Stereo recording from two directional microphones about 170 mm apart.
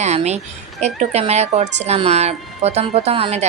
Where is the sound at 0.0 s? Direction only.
40° right (ahead or behind).